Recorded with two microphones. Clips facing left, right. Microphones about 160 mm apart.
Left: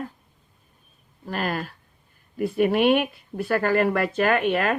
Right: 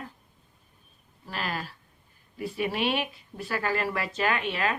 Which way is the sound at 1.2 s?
50° left (ahead or behind).